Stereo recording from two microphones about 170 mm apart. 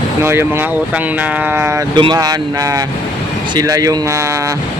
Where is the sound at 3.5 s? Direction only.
20° right (ahead or behind).